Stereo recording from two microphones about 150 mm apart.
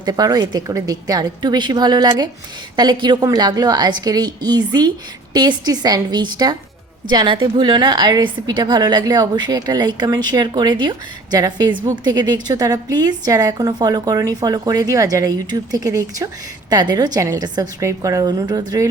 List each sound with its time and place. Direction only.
0.0 s a woman's voice: 25° right (ahead or behind)